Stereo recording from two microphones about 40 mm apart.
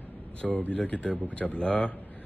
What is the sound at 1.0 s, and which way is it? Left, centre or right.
Speech, left.